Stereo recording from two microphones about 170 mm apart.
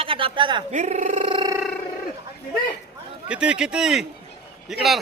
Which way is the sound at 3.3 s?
5° right (ahead or behind).